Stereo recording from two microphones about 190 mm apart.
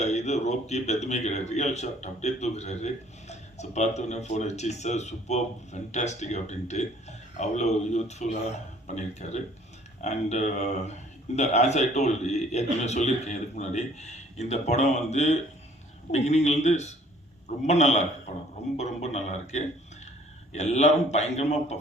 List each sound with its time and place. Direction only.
0.0 s a man's voice: 35° left (ahead or behind)